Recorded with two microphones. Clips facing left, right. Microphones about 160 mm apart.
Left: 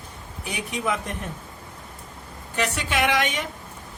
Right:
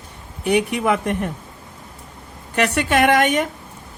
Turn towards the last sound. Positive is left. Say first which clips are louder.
# right 8 dB
turn(degrees=-50)  # may be behind; listen again after turning